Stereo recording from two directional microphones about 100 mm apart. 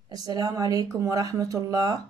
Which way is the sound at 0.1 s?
40° right (ahead or behind).